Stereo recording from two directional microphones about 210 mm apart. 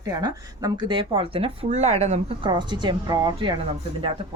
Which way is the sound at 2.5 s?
20° right (ahead or behind).